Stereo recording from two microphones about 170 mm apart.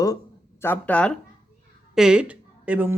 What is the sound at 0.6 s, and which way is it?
Speech, 10° left (ahead or behind).